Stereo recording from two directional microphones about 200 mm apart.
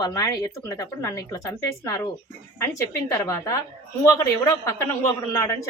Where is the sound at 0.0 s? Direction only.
15° left (ahead or behind).